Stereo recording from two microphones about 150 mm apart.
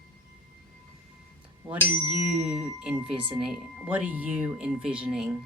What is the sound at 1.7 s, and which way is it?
Tuning fork, 10° right (ahead or behind).